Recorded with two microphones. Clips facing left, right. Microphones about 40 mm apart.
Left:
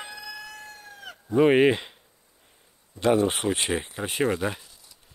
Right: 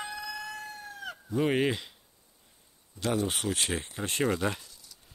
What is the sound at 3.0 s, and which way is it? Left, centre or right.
Speech, left.